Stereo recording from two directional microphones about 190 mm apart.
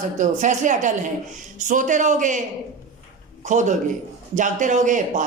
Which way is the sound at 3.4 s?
40° right (ahead or behind).